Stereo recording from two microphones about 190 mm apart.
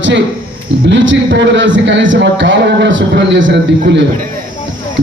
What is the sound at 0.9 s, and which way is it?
A man's voice, 75° right (ahead or behind).